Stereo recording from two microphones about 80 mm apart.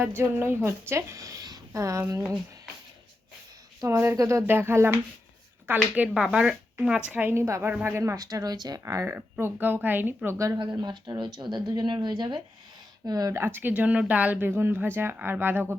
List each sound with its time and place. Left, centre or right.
0.2 s a woman's voice: right
3.8 s speech: right
4.4 s speech: right
6.1 s speech: centre
7.3 s speech: right
7.7 s speech: right
7.9 s speech: right
8.8 s speech: right
9.4 s speech: right
10.2 s speech: right
10.6 s speech: right
13.1 s speech: right
13.3 s speech: right